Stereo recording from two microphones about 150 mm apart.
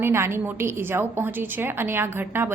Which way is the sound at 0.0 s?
15° right (ahead or behind).